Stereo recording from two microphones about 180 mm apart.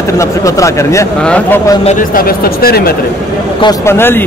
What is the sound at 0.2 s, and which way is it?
Speech, 15° left (ahead or behind).